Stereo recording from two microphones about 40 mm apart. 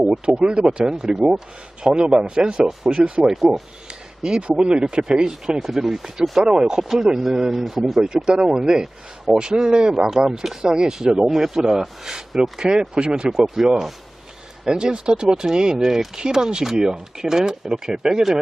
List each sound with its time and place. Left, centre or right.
0.3 s speech: right
0.9 s speech: centre
3.2 s speech: centre
3.8 s a sound: right
4.4 s speech: right
5.3 s speech: centre
6.8 s speech: centre
8.1 s speech: centre
12.4 s speech: centre